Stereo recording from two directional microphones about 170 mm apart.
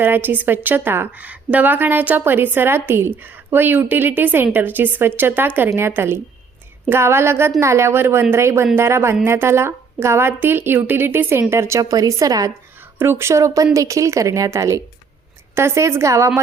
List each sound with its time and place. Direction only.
0.0 s a woman's voice: 10° right (ahead or behind)